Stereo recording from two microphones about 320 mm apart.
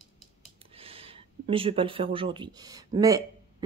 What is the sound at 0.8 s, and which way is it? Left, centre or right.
Speech, centre.